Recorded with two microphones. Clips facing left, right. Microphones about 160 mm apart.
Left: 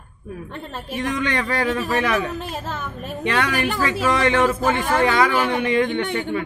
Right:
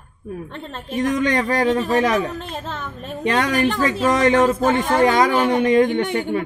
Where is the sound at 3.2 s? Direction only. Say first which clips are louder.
Right 3 dB; 40° right (ahead or behind).